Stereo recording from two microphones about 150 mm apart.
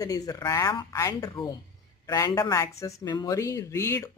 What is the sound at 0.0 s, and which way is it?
Speech, 25° left (ahead or behind).